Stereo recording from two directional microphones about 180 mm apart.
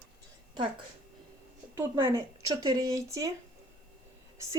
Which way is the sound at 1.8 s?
15° right (ahead or behind).